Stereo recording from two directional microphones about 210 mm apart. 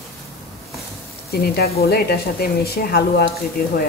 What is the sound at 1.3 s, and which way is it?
A woman's voice, 50° left (ahead or behind).